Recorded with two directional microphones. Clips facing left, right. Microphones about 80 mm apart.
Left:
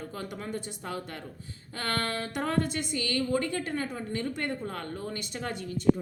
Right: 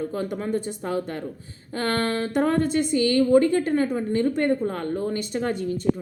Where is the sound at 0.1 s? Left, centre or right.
Right.